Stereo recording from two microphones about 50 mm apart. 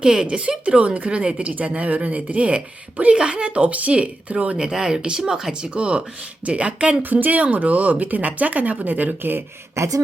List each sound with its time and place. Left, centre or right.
0.0 s speech: centre
4.5 s speech: centre
7.0 s speech: right
9.8 s speech: right